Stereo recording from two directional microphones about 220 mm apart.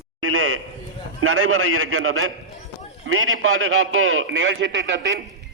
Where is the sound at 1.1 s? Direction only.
75° right (ahead or behind); by 5.2 s 55° right (ahead or behind).